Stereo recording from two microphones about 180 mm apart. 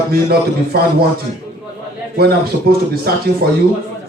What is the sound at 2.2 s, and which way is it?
Speech, 60° right (ahead or behind).